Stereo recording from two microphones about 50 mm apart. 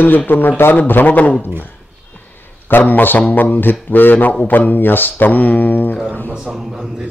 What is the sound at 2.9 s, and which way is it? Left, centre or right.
Speech, left.